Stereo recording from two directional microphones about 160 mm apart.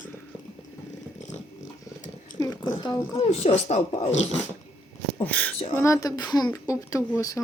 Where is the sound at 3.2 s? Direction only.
40° left (ahead or behind).